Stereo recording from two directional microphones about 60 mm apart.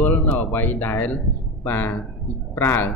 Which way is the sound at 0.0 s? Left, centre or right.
Left.